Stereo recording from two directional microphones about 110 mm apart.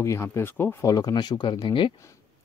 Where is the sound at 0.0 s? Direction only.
25° left (ahead or behind).